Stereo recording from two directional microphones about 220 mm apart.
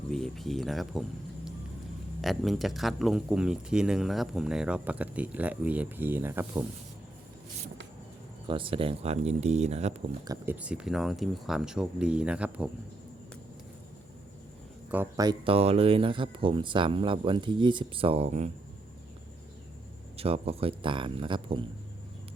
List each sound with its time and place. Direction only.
0.1 s speech: centre (ahead or behind)
2.2 s speech: centre (ahead or behind)
8.4 s speech: 25° right (ahead or behind)
10.2 s speech: 10° right (ahead or behind)
14.8 s speech: 10° right (ahead or behind); by 18.5 s 30° right (ahead or behind)
20.1 s speech: 25° right (ahead or behind)